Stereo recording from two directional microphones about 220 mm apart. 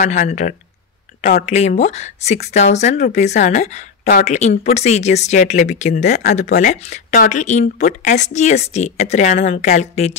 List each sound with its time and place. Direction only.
0.0 s speech: 35° left (ahead or behind)